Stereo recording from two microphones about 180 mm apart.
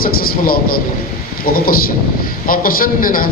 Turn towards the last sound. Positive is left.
turn(degrees=50)  # may be behind; listen again after turning